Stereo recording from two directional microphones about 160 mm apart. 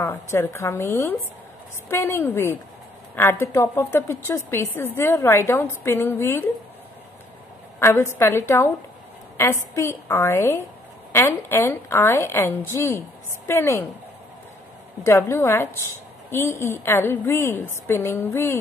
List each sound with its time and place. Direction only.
0.0 s a woman's voice: 15° left (ahead or behind)
7.8 s a woman's voice: 15° left (ahead or behind)
15.0 s a woman's voice: 15° left (ahead or behind)